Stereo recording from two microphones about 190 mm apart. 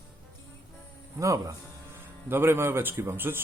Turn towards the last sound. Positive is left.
turn(degrees=-10)  # may be behind; listen again after turning